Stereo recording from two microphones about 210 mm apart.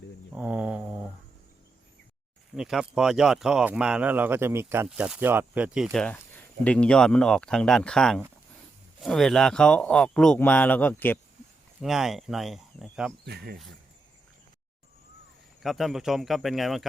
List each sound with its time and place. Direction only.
0.3 s mantra: 5° right (ahead or behind)
2.6 s speech: centre (ahead or behind)
13.2 s speech: 50° right (ahead or behind)
15.6 s speech: centre (ahead or behind)